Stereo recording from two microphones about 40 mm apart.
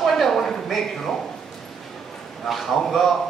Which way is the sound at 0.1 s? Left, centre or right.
Centre.